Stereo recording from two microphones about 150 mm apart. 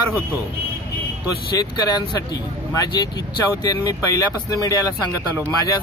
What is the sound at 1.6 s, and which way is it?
A man's voice, 25° left (ahead or behind).